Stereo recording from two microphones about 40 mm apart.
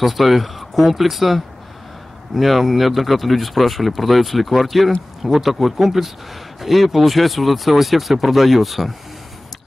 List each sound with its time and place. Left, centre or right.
0.0 s speech: centre